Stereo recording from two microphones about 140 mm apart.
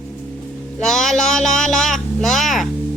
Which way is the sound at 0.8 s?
5° left (ahead or behind).